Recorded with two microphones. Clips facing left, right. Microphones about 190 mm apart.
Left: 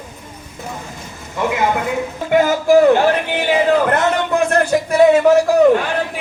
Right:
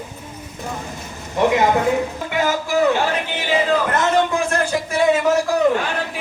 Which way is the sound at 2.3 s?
50° left (ahead or behind).